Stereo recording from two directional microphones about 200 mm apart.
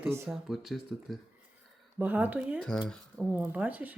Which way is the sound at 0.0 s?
10° right (ahead or behind).